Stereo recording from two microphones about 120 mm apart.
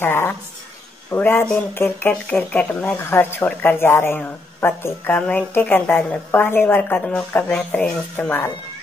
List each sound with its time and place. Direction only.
0.0 s speech: 20° left (ahead or behind)